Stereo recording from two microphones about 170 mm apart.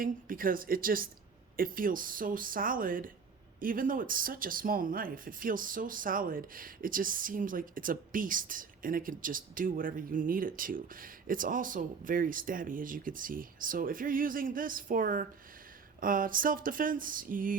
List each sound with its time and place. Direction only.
0.0 s speech: 55° right (ahead or behind)